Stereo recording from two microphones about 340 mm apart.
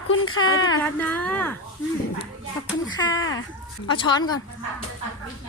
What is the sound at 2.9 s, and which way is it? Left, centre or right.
Speech, centre.